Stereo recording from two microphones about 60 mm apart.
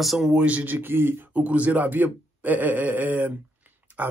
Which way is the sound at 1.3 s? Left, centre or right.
Right.